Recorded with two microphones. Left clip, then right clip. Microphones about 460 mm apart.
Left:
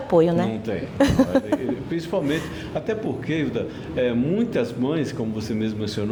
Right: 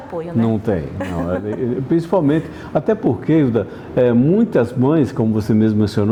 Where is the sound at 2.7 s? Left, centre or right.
Right.